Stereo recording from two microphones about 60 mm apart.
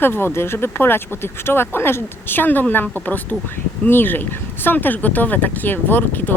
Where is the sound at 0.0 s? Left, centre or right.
Left.